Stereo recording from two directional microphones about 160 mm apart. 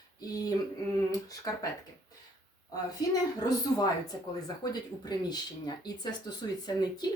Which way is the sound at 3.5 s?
25° left (ahead or behind).